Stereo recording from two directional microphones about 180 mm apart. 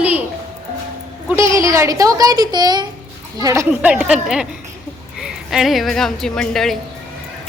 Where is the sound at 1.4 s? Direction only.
15° right (ahead or behind).